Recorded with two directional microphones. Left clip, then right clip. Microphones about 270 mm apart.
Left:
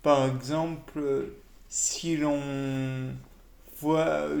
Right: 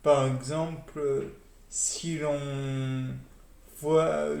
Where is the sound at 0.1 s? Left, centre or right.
Left.